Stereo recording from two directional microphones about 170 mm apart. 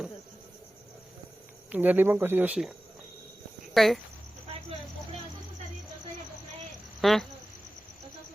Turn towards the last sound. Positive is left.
turn(degrees=0)  # may be behind; listen again after turning